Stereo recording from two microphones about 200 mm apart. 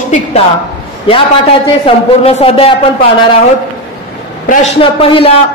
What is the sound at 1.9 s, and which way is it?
Speech, 30° left (ahead or behind).